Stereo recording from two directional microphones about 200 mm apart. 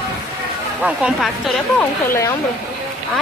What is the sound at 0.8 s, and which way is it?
Speech, 5° right (ahead or behind).